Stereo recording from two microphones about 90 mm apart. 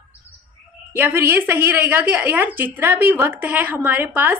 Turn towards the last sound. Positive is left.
turn(degrees=-20)  # may be behind; listen again after turning